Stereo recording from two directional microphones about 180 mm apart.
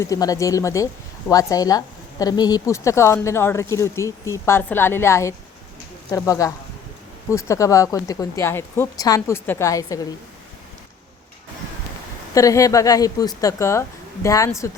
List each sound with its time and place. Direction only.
0.0 s a woman's voice: 20° left (ahead or behind)
12.3 s a woman's voice: 20° left (ahead or behind)